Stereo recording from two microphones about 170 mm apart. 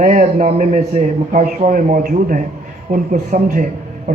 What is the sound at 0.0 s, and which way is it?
A man's voice, 45° right (ahead or behind).